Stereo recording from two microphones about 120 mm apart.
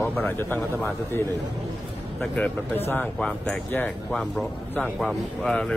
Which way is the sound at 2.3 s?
15° left (ahead or behind).